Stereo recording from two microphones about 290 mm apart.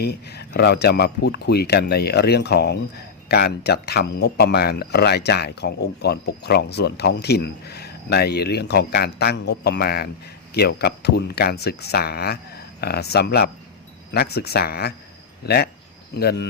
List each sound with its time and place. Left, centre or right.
0.0 s speech: left